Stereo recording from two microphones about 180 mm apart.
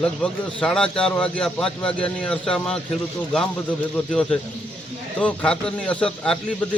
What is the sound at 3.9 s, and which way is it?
A man's voice, 5° left (ahead or behind).